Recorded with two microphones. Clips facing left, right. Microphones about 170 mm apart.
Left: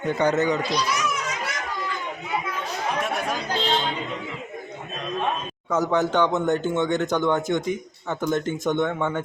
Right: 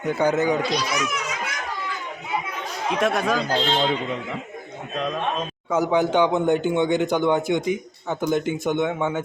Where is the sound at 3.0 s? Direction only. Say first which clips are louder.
Right 6 dB; 90° right.